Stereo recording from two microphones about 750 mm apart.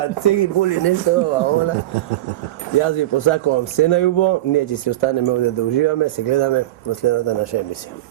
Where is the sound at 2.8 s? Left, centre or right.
Left.